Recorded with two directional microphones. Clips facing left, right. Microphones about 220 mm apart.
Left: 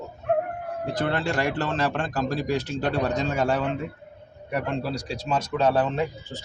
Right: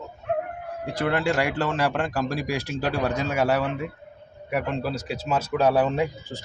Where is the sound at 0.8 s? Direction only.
10° right (ahead or behind).